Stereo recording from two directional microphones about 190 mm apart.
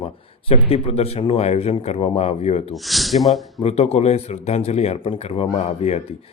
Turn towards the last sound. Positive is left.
turn(degrees=35)  # may be behind; listen again after turning